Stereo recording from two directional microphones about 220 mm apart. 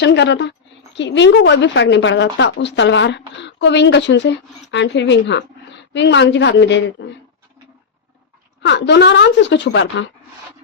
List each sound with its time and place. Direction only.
0.0 s a woman's voice: 50° left (ahead or behind)
8.6 s a woman's voice: 50° left (ahead or behind)